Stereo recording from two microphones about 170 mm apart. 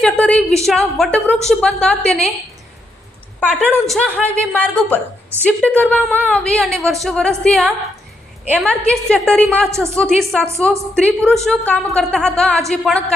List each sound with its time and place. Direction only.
0.0 s a woman's voice: 5° left (ahead or behind)
3.8 s a woman's voice: 5° left (ahead or behind)
9.6 s a woman's voice: 15° right (ahead or behind)
9.9 s a woman's voice: 5° left (ahead or behind)